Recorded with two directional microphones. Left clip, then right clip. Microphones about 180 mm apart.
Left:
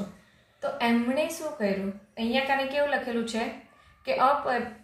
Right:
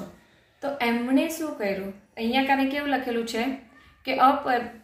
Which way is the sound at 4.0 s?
35° right (ahead or behind).